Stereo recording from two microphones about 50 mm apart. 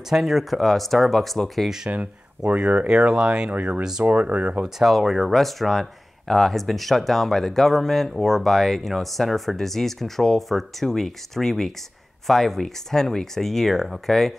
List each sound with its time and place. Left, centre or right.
0.1 s speech: centre
2.4 s speech: right
3.4 s speech: right
4.6 s speech: centre